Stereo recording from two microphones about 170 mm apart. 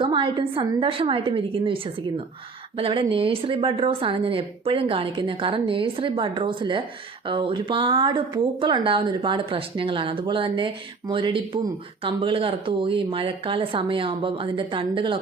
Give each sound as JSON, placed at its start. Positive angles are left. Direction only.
{"t": 0.0, "sound": "a woman's voice", "side_deg": -30}